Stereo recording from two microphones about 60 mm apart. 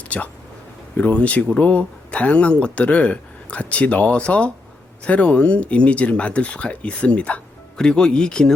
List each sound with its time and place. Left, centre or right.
0.1 s speech: left